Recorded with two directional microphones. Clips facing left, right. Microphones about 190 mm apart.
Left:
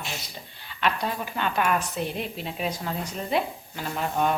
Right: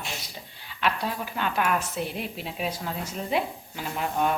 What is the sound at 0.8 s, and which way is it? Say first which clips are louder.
A woman's voice: left 1 dB; 5° right (ahead or behind).